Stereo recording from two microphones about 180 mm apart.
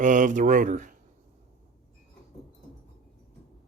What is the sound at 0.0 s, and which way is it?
Speech, 45° right (ahead or behind).